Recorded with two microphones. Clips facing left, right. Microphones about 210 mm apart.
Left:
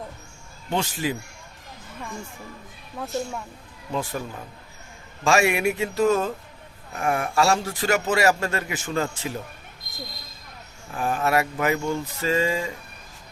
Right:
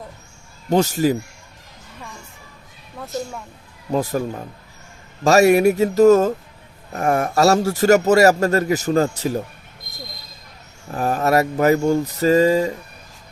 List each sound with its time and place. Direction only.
0.7 s speech: 40° right (ahead or behind)
3.9 s speech: 40° right (ahead or behind)
10.9 s speech: 40° right (ahead or behind)